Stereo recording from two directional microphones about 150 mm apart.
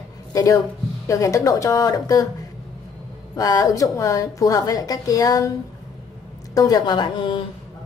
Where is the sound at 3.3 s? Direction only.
25° left (ahead or behind).